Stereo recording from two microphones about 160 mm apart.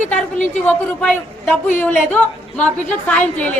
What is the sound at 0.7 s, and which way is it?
A woman's voice, 10° left (ahead or behind).